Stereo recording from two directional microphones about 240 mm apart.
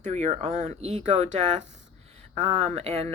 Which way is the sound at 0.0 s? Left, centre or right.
Right.